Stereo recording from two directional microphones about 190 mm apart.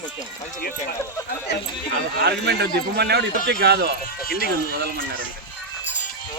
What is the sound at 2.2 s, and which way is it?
A man's voice, 60° right (ahead or behind).